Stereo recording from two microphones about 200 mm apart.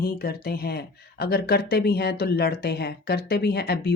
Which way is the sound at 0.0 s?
50° left (ahead or behind).